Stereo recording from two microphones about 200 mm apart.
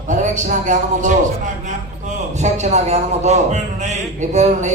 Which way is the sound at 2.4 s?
35° right (ahead or behind).